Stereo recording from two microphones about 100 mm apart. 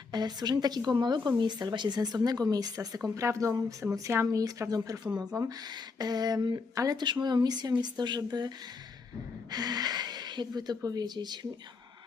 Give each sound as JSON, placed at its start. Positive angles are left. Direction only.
{"t": 0.1, "sound": "speech", "side_deg": -45}